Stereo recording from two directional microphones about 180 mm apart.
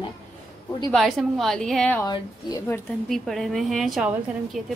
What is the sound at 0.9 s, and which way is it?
A woman's voice, centre (ahead or behind).